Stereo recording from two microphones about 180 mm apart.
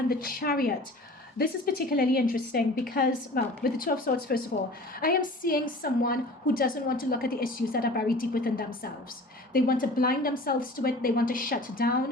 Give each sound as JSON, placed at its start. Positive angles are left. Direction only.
{"t": 0.1, "sound": "a woman's voice", "side_deg": 55}